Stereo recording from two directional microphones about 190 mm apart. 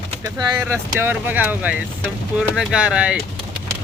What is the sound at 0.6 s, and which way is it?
Speech, 10° right (ahead or behind).